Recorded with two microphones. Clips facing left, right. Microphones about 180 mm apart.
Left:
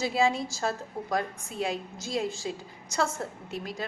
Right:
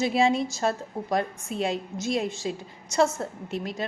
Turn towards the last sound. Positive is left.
turn(degrees=-25)  # may be behind; listen again after turning